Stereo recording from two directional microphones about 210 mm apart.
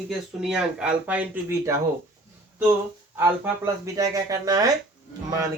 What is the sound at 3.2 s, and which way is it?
Speech, 15° right (ahead or behind).